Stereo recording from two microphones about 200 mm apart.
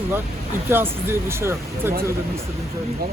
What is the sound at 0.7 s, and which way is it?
Speech, 10° right (ahead or behind).